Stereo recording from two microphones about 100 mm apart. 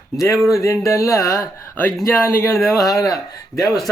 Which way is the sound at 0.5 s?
30° left (ahead or behind).